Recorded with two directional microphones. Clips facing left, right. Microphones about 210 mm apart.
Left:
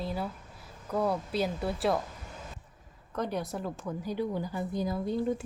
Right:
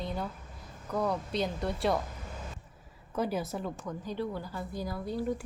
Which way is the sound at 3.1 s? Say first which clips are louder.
Right 1 dB; 5° right (ahead or behind).